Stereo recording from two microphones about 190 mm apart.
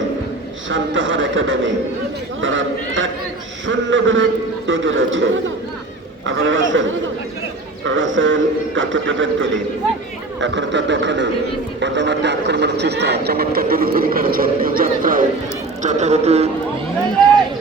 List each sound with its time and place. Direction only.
0.7 s a man's voice: 85° right
10.4 s speech: 75° right (ahead or behind)
11.8 s a sound: 70° right (ahead or behind); by 16.5 s 35° right (ahead or behind)